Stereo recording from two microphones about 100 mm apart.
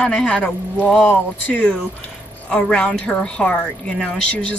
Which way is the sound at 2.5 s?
10° left (ahead or behind).